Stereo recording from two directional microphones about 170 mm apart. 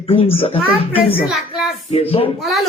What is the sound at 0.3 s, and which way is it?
Speech, 35° left (ahead or behind).